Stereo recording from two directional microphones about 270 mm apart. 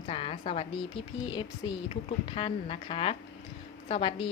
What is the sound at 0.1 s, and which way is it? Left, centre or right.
A woman's voice, centre.